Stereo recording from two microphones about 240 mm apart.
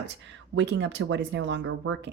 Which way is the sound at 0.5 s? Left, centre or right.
Right.